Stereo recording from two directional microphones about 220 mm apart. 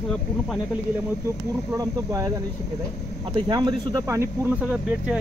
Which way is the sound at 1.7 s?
15° right (ahead or behind).